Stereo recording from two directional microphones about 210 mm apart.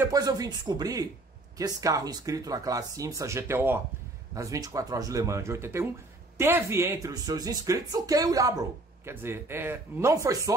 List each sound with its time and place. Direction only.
0.0 s speech: 15° right (ahead or behind)